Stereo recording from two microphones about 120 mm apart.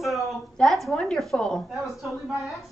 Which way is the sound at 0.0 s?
Centre (ahead or behind).